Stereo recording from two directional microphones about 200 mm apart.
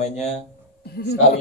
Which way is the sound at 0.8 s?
55° left (ahead or behind).